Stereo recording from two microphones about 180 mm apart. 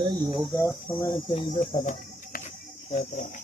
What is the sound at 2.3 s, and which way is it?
Cricket, 50° left (ahead or behind).